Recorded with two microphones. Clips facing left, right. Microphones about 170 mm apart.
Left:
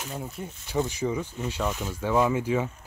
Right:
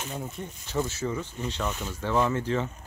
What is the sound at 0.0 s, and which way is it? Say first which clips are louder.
Speech: even; 10° left (ahead or behind).